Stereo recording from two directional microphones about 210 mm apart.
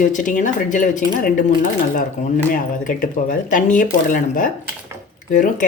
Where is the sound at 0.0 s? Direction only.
35° left (ahead or behind).